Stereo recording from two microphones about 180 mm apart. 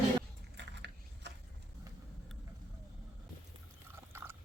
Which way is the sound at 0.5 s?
75° right (ahead or behind).